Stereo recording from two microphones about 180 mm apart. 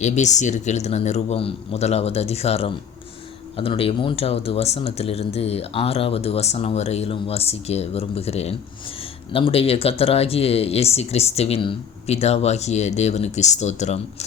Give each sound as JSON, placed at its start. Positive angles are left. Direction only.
{"t": 0.0, "sound": "speech", "side_deg": 40}